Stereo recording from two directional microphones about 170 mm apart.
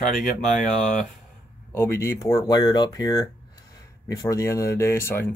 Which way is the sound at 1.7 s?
15° left (ahead or behind).